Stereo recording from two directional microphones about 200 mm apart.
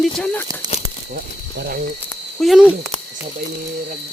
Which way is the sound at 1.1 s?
50° right (ahead or behind).